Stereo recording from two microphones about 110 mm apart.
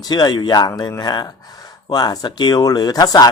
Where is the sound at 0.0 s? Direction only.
40° left (ahead or behind).